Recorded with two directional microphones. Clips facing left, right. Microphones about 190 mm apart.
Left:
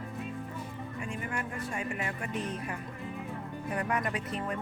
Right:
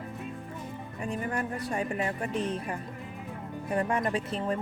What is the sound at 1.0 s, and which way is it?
Speech, 35° right (ahead or behind).